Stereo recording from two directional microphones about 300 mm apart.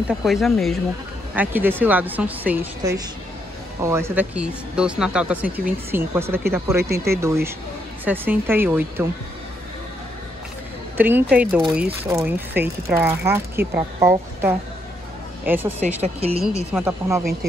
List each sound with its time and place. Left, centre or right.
0.1 s speech: centre
11.0 s speech: centre
16.0 s speech: centre
16.7 s speech: centre